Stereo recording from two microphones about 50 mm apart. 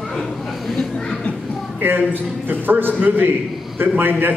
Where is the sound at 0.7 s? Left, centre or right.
Centre.